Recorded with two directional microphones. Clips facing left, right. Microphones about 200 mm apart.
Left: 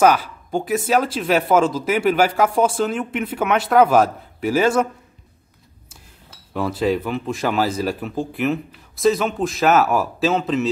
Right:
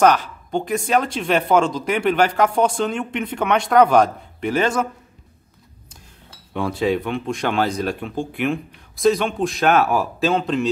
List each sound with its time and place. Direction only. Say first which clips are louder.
0.0 s speech: even; 5° left (ahead or behind)
6.5 s speech: even; centre (ahead or behind)